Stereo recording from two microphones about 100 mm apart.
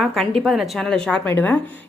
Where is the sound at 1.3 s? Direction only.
20° left (ahead or behind).